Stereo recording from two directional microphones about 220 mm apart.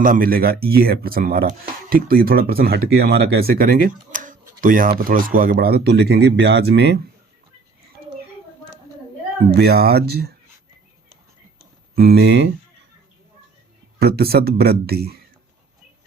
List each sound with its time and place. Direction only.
0.0 s speech: 40° right (ahead or behind)
9.5 s speech: 45° right (ahead or behind)
11.9 s speech: 45° right (ahead or behind)
14.0 s speech: 45° right (ahead or behind)